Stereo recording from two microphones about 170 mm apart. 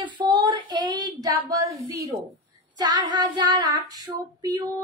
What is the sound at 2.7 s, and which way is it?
A woman's voice, 25° right (ahead or behind).